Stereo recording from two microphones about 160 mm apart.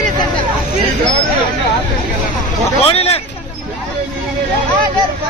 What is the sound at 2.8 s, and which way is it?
Speech, 40° left (ahead or behind).